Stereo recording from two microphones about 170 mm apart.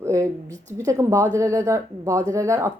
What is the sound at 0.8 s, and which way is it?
Speech, 20° right (ahead or behind).